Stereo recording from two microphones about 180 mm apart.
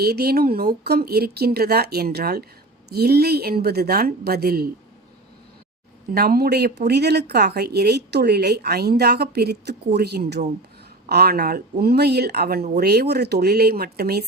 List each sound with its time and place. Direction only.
0.0 s speech: 60° right (ahead or behind)
6.1 s speech: 55° right (ahead or behind)